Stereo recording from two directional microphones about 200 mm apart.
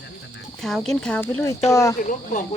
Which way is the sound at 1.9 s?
40° left (ahead or behind).